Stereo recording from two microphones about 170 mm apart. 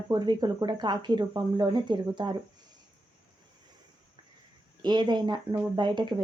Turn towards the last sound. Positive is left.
turn(degrees=-25)  # may be behind; listen again after turning